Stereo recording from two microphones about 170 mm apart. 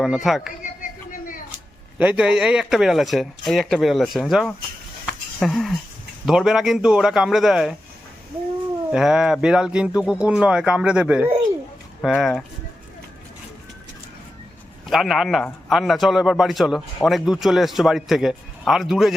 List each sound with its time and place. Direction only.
0.0 s a man's voice: centre (ahead or behind)
0.6 s a sound: 50° left (ahead or behind)
2.0 s a man's voice: 5° right (ahead or behind)
8.9 s a man's voice: 5° right (ahead or behind)
14.8 s a man's voice: centre (ahead or behind)